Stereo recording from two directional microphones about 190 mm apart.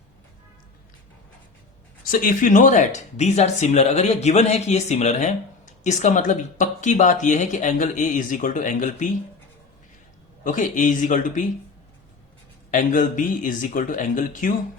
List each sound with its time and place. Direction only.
2.0 s speech: 50° left (ahead or behind)
10.4 s speech: 40° left (ahead or behind)
12.7 s speech: 45° left (ahead or behind)